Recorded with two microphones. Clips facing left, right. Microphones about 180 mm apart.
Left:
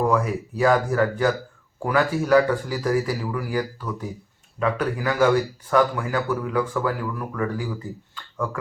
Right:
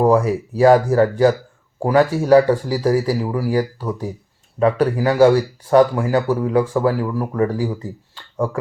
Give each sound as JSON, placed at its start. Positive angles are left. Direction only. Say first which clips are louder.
{"t": 0.0, "sound": "a man's voice", "louder": "right 7 dB", "side_deg": -30}